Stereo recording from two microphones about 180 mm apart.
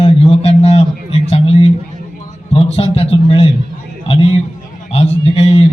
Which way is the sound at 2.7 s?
30° left (ahead or behind).